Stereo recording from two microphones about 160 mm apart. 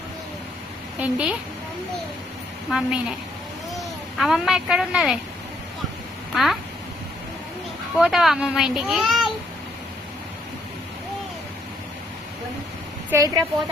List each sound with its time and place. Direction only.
1.0 s a child's voice: 5° right (ahead or behind)
2.6 s a child's voice: 5° right (ahead or behind)
4.2 s a child's voice: centre (ahead or behind)
6.3 s a child's voice: centre (ahead or behind)
7.9 s a child's voice: centre (ahead or behind)
13.1 s a woman's voice: 25° right (ahead or behind)